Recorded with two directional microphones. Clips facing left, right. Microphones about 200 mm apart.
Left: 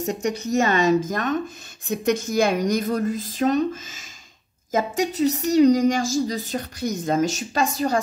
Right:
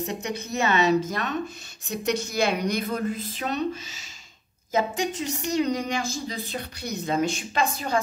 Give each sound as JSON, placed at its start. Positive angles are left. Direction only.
{"t": 0.0, "sound": "a woman's voice", "side_deg": 45}